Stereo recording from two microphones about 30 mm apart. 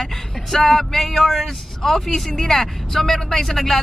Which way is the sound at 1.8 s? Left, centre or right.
Centre.